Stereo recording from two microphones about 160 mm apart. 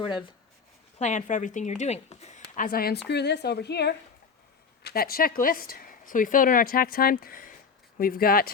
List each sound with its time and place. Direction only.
0.0 s speech: 30° left (ahead or behind)
0.9 s a woman's voice: 45° left (ahead or behind); by 3.0 s 70° left (ahead or behind)
3.1 s a woman's voice: 90° left
4.8 s speech: 75° left (ahead or behind)